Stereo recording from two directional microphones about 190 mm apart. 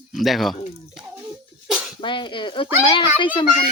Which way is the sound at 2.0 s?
25° left (ahead or behind).